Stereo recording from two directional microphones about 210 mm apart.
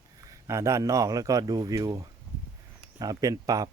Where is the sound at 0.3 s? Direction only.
15° right (ahead or behind).